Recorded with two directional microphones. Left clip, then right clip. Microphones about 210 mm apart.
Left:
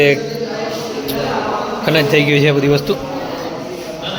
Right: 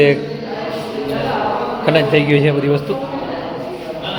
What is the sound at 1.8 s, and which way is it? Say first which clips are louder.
A man's voice: left 1 dB; 10° left (ahead or behind).